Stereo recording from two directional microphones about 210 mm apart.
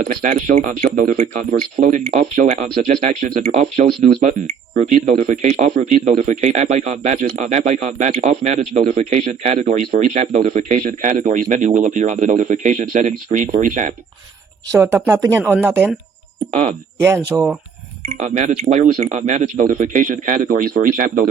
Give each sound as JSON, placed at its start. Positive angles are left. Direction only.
{"t": 0.0, "sound": "speech", "side_deg": -40}
{"t": 14.7, "sound": "a woman's voice", "side_deg": -10}
{"t": 17.0, "sound": "a woman's voice", "side_deg": -15}
{"t": 18.0, "sound": "speech", "side_deg": -35}